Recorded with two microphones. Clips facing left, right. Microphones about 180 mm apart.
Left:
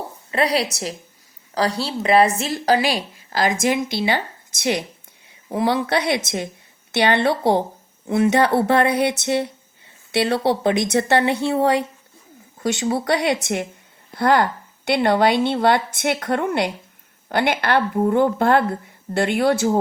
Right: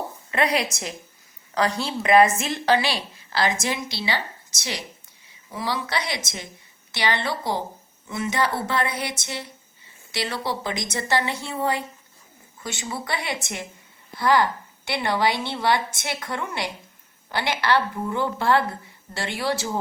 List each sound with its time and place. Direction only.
0.3 s a woman's voice: 35° left (ahead or behind); by 19.8 s 55° left (ahead or behind)